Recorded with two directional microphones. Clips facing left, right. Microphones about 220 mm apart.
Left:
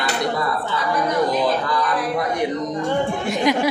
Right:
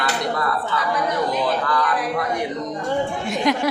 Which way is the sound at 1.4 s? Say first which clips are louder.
Left 1 dB; 15° left (ahead or behind).